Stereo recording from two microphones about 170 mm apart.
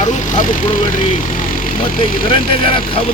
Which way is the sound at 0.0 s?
45° left (ahead or behind).